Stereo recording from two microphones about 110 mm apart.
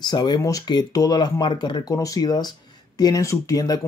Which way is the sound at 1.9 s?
30° left (ahead or behind).